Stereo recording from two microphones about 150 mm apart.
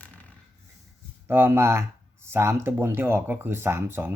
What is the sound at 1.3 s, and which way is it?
Speech, 15° right (ahead or behind).